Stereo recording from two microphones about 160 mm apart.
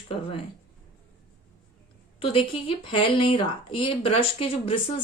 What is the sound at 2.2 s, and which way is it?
A woman's voice, 35° left (ahead or behind).